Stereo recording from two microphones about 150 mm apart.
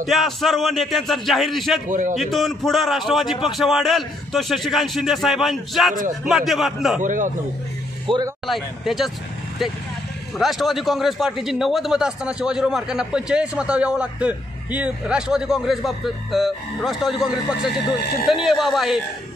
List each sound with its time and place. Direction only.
0.0 s a man's voice: centre (ahead or behind)
1.9 s speech: 60° right (ahead or behind)
2.1 s a man's voice: centre (ahead or behind)
7.0 s speech: 60° right (ahead or behind)
8.1 s speech: 35° right (ahead or behind)
8.5 s a man's voice: centre (ahead or behind)
10.3 s a man's voice: centre (ahead or behind)